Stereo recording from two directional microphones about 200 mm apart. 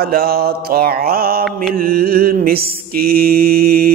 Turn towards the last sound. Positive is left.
turn(degrees=-50)  # may be behind; listen again after turning